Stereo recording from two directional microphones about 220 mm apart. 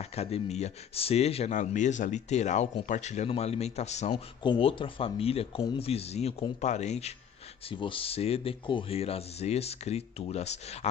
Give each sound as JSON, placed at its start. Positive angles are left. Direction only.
{"t": 0.1, "sound": "speech", "side_deg": 30}
{"t": 4.1, "sound": "speech", "side_deg": 20}